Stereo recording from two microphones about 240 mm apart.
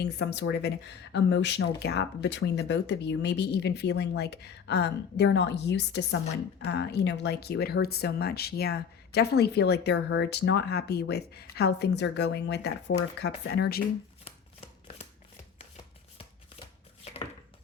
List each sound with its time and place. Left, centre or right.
0.0 s speech: left
14.3 s shuffling cards: left
15.5 s chopping: left